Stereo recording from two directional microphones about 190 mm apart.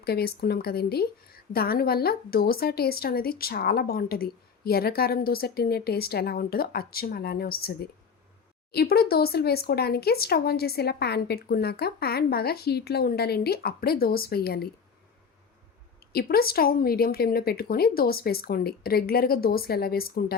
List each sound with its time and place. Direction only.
0.0 s a woman's voice: 55° left (ahead or behind)
16.1 s a woman's voice: 50° left (ahead or behind)